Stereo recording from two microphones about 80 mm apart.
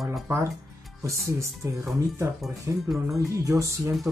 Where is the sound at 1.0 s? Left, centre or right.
Right.